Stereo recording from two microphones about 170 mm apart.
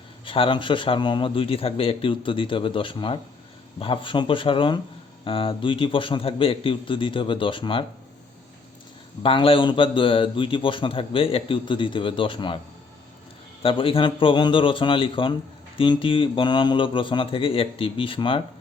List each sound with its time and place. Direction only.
0.3 s a man's voice: 30° left (ahead or behind)
9.2 s a man's voice: 30° left (ahead or behind)
13.6 s a man's voice: 30° left (ahead or behind)